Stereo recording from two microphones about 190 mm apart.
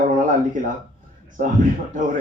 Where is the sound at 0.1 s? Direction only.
45° right (ahead or behind).